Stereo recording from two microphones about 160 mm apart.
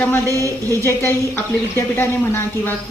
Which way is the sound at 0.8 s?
15° left (ahead or behind).